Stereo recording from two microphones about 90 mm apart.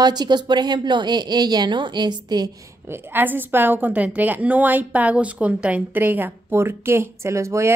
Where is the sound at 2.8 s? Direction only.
25° right (ahead or behind).